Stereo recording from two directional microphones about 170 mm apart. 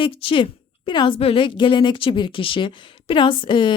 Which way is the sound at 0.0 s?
30° left (ahead or behind).